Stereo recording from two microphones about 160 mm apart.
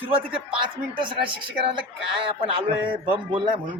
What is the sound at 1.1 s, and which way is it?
A man's voice, 30° right (ahead or behind).